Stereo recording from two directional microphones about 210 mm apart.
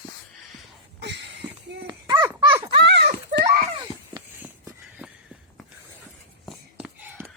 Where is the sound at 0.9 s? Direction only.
55° right (ahead or behind).